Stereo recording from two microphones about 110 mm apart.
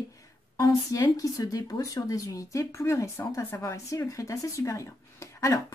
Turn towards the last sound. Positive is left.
turn(degrees=25)  # may be behind; listen again after turning